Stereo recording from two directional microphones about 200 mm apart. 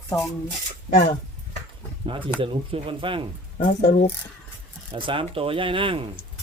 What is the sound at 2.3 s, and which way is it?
Speech, 25° right (ahead or behind).